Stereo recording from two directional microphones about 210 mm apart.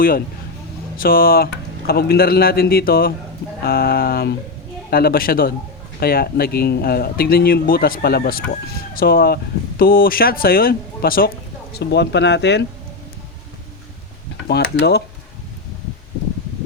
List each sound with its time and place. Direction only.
0.9 s speech: 45° left (ahead or behind)
14.4 s speech: 50° left (ahead or behind)